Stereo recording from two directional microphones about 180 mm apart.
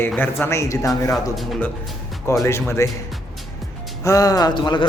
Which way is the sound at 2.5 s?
15° left (ahead or behind).